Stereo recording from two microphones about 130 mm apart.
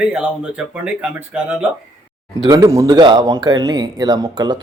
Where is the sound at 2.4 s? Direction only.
30° right (ahead or behind).